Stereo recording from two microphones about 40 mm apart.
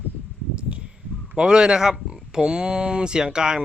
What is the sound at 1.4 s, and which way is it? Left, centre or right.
Speech, right.